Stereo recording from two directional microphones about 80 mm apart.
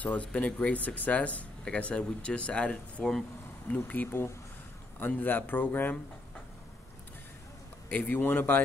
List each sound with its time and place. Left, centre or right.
0.0 s speech: centre
3.7 s speech: left
7.9 s speech: left